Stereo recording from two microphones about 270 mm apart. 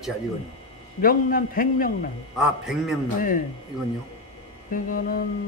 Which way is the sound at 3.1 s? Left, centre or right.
Left.